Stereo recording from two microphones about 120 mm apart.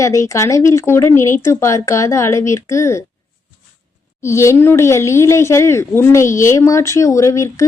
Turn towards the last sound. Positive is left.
turn(degrees=25)  # may be behind; listen again after turning